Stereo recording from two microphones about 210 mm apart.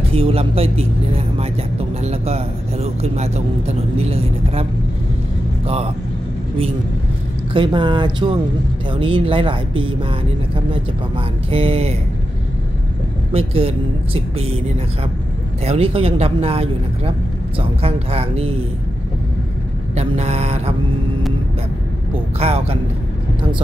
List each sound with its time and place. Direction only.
0.1 s speech: 25° right (ahead or behind)
7.5 s speech: 20° right (ahead or behind)
11.5 s speech: 30° right (ahead or behind)
13.3 s speech: 30° right (ahead or behind)
15.6 s speech: 30° right (ahead or behind)
20.0 s speech: 30° right (ahead or behind)
22.1 s speech: 30° right (ahead or behind)